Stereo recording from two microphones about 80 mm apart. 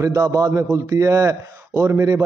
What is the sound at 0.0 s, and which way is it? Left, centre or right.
A man's voice, right.